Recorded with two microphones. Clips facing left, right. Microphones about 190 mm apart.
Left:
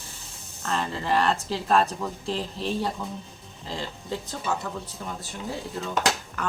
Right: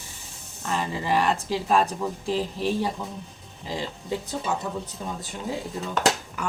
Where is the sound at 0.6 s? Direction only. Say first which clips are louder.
Right 1 dB; 10° right (ahead or behind).